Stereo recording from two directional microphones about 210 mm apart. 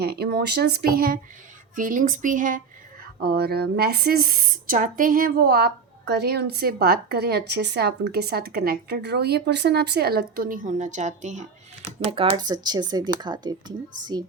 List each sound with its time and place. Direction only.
0.0 s speech: 50° right (ahead or behind)
3.2 s speech: 50° right (ahead or behind); by 14.3 s 20° right (ahead or behind)